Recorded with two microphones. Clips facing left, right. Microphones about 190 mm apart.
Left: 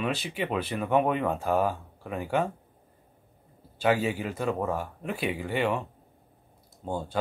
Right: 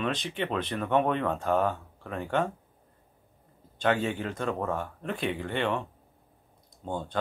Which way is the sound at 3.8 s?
5° left (ahead or behind).